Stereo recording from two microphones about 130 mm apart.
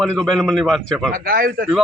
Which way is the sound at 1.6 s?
90° right.